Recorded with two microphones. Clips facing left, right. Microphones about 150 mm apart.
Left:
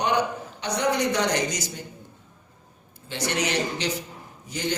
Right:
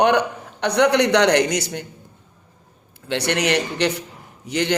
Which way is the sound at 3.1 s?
70° right (ahead or behind).